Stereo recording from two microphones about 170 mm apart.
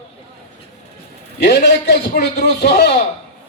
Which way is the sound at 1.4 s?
90° left.